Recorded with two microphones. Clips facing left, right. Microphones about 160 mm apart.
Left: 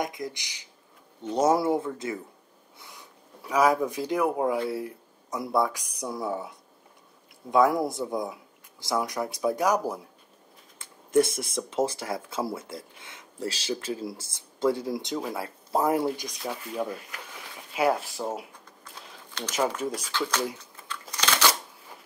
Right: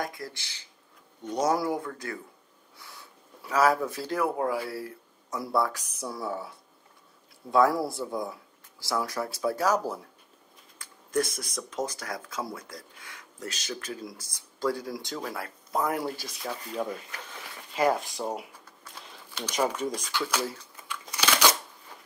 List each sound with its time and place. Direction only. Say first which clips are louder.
0.0 s speech: left 3 dB; 20° left (ahead or behind)
1.3 s speech: left 4 dB; 25° left (ahead or behind)
7.5 s speech: left 1 dB; 20° left (ahead or behind)
10.8 s speech: left 6 dB; 25° left (ahead or behind)
16.4 s speech: left 1 dB; 10° left (ahead or behind)
18.9 s a sound: left 1 dB; 5° right (ahead or behind)
19.8 s speech: even; 10° left (ahead or behind)
20.1 s speech: left 1 dB; 10° right (ahead or behind)
21.1 s a sound: right 1 dB; 10° right (ahead or behind)